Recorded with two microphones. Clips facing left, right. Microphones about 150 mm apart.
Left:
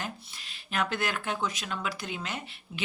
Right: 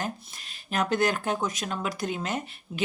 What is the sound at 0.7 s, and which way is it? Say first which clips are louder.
Speech: right 5 dB; 40° right (ahead or behind).